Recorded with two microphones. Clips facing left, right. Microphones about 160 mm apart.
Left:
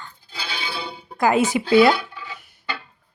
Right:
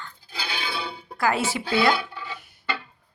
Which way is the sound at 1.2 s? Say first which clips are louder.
Left 6 dB; 20° left (ahead or behind).